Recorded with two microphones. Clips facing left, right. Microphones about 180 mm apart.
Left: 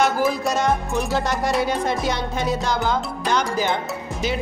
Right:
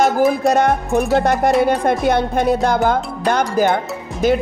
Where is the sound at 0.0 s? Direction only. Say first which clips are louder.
Right 6 dB; 55° right (ahead or behind).